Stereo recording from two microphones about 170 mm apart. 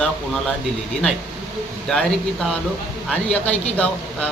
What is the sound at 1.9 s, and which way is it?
A man's voice, 5° left (ahead or behind).